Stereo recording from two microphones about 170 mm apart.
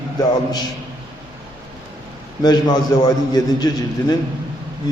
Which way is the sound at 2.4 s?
25° left (ahead or behind).